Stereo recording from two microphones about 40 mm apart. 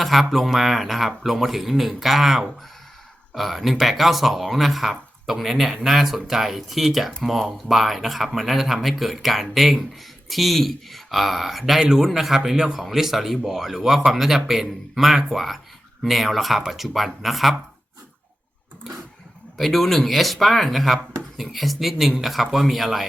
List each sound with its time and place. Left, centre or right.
0.0 s speech: centre
11.8 s a man's voice: centre
19.5 s speech: centre